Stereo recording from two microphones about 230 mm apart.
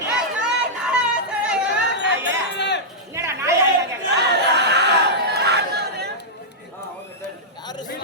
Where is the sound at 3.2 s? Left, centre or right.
Centre.